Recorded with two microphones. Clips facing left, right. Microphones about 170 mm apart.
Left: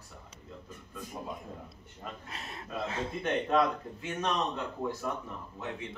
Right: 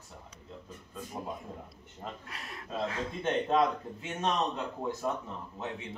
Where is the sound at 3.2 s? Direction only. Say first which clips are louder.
Right 1 dB; 25° right (ahead or behind).